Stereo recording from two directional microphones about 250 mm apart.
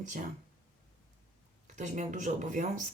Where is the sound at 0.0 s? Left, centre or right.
Right.